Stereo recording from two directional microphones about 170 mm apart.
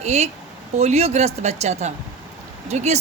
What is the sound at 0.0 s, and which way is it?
A woman's voice, 40° right (ahead or behind).